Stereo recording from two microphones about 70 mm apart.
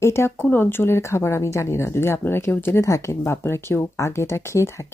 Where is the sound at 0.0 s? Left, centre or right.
Left.